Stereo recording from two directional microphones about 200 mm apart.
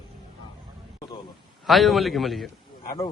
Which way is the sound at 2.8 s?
15° left (ahead or behind).